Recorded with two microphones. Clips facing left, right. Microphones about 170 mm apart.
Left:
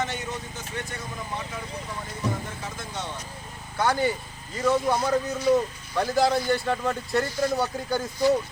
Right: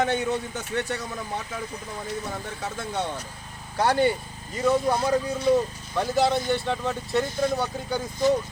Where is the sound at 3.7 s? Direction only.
35° right (ahead or behind).